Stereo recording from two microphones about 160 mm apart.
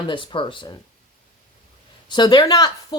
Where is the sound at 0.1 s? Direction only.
30° left (ahead or behind).